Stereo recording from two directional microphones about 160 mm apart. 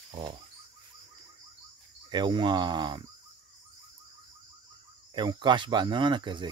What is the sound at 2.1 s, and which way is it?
Speech, 30° right (ahead or behind).